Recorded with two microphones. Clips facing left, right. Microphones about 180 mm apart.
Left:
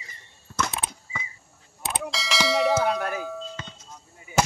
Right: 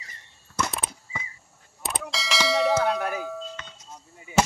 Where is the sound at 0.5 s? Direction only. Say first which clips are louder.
Even; 25° left (ahead or behind).